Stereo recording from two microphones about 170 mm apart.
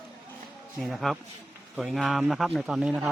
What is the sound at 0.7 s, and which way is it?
A man's voice, centre (ahead or behind).